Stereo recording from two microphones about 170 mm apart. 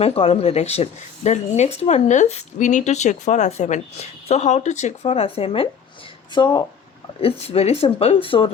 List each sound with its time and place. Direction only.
0.0 s speech: 35° left (ahead or behind)